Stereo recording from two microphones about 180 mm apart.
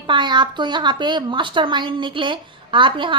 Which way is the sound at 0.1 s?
25° right (ahead or behind).